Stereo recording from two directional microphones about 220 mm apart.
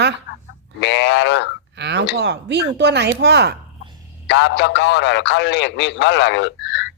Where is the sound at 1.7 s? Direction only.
50° right (ahead or behind).